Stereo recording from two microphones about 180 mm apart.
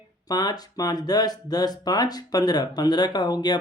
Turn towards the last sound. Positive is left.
turn(degrees=25)  # may be behind; listen again after turning